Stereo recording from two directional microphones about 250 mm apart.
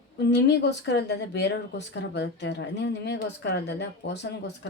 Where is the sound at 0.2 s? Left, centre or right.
Left.